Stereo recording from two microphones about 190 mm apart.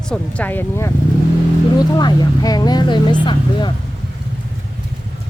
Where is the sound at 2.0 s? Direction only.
20° left (ahead or behind).